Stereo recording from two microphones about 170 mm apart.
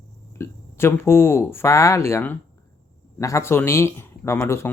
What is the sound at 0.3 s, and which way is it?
Speech, 15° left (ahead or behind).